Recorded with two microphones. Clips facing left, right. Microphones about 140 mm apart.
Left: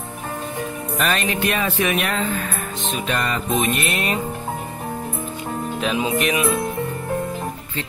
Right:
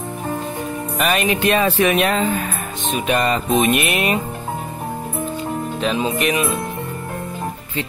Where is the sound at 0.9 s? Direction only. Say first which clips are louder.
Right 3 dB; 10° right (ahead or behind).